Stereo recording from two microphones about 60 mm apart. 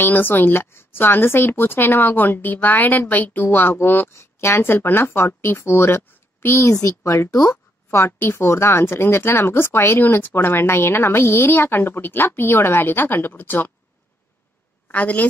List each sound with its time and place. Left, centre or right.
0.0 s speech: left
4.1 s speech: left
6.6 s speech: left
7.0 s a woman's voice: left
7.2 s speech: left
8.2 s speech: left
14.9 s a woman's voice: left